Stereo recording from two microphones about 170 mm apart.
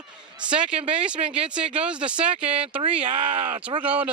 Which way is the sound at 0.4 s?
5° right (ahead or behind).